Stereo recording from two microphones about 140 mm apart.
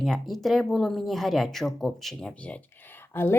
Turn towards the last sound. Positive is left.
turn(degrees=15)  # may be behind; listen again after turning